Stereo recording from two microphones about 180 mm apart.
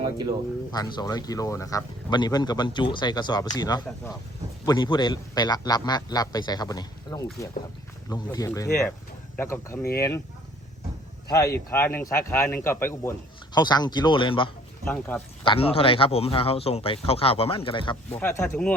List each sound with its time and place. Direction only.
0.0 s speech: 25° right (ahead or behind)
0.7 s speech: 25° left (ahead or behind)
11.3 s speech: 15° left (ahead or behind)
14.8 s speech: 10° left (ahead or behind)
15.4 s speech: 30° left (ahead or behind)
18.1 s speech: 10° left (ahead or behind)